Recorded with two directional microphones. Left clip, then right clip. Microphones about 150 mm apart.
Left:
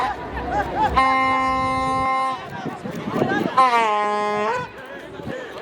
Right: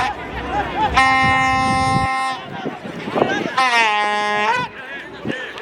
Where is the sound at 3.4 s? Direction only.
20° right (ahead or behind).